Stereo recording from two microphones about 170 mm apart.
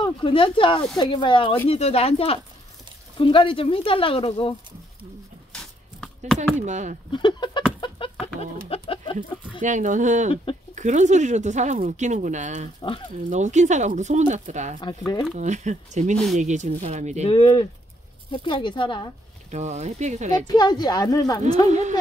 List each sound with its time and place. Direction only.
0.0 s a woman's voice: 30° left (ahead or behind)
5.5 s a sound: 5° left (ahead or behind)
6.6 s speech: 45° right (ahead or behind)
7.1 s a woman's voice: 25° left (ahead or behind)
8.6 s bird: 35° left (ahead or behind)
9.6 s speech: 45° right (ahead or behind)
17.3 s a woman's voice: 30° left (ahead or behind)
19.5 s speech: 40° right (ahead or behind)
20.4 s a woman's voice: 25° left (ahead or behind)
21.6 s speech: 45° right (ahead or behind)